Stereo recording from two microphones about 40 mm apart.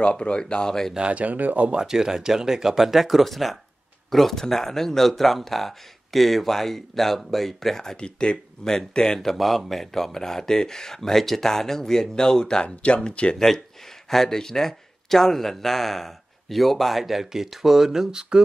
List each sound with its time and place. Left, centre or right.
0.0 s speech: left
0.9 s speech: right
1.2 s speech: right
1.7 s speech: centre
9.2 s speech: centre
12.6 s speech: left
14.0 s speech: centre